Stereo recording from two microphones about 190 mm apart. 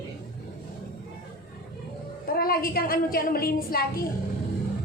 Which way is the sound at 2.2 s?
50° left (ahead or behind).